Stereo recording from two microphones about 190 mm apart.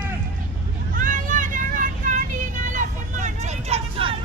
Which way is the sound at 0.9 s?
45° right (ahead or behind).